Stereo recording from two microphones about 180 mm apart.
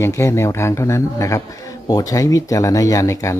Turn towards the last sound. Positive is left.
turn(degrees=15)  # may be behind; listen again after turning